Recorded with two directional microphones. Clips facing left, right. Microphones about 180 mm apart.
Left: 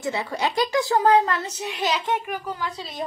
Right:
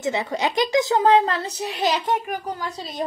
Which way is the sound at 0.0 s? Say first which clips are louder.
Right 2 dB; 20° right (ahead or behind).